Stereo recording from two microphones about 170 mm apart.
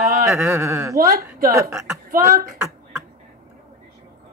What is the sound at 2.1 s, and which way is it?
Speech, 55° right (ahead or behind).